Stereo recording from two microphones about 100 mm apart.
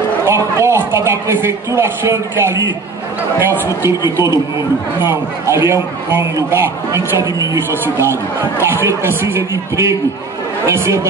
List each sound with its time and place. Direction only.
0.2 s a man's voice: 25° right (ahead or behind)
5.0 s a man's voice: 25° right (ahead or behind)